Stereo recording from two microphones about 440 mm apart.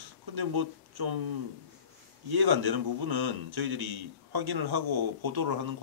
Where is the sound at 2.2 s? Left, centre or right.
Right.